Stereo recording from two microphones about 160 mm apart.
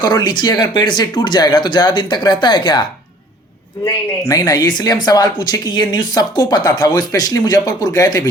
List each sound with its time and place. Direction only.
0.0 s speech: 25° left (ahead or behind)
4.3 s speech: 25° left (ahead or behind)